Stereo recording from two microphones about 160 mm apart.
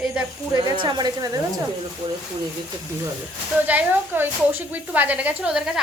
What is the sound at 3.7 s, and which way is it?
A woman's voice, 10° right (ahead or behind).